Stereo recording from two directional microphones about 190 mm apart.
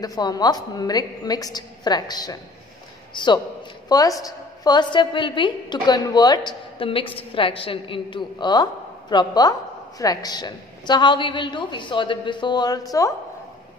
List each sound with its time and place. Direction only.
0.0 s a woman's voice: 20° left (ahead or behind)